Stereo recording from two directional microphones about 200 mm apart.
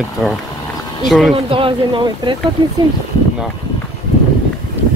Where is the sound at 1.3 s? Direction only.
25° right (ahead or behind).